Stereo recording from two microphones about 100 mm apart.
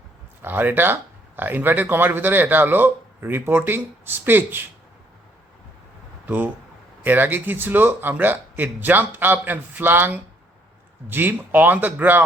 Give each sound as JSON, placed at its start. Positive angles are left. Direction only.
{"t": 0.4, "sound": "speech", "side_deg": -20}
{"t": 6.2, "sound": "speech", "side_deg": -20}